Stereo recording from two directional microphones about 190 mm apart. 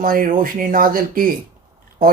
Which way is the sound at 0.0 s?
45° right (ahead or behind).